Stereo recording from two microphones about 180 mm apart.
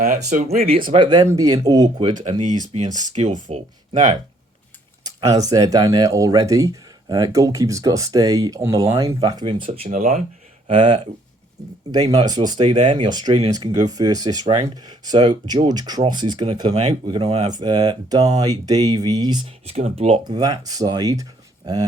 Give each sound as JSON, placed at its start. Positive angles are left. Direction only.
{"t": 0.3, "sound": "speech", "side_deg": -40}
{"t": 0.9, "sound": "speech", "side_deg": -25}
{"t": 2.2, "sound": "speech", "side_deg": -40}
{"t": 5.0, "sound": "speech", "side_deg": -20}
{"t": 10.7, "sound": "speech", "side_deg": -25}
{"t": 19.6, "sound": "speech", "side_deg": -35}
{"t": 20.2, "sound": "speech", "side_deg": -20}